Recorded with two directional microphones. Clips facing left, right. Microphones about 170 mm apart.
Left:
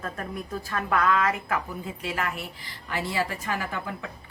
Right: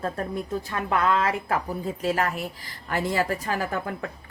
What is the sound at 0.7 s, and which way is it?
A woman's voice, 20° right (ahead or behind).